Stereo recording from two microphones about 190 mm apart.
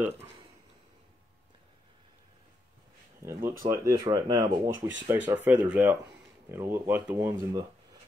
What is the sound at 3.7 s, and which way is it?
Speech, 15° right (ahead or behind).